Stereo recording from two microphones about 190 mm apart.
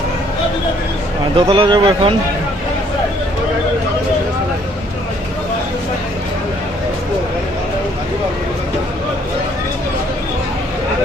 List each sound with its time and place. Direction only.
1.4 s speech: 25° right (ahead or behind)